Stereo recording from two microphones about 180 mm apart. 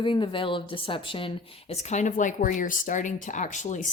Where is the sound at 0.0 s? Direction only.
25° left (ahead or behind).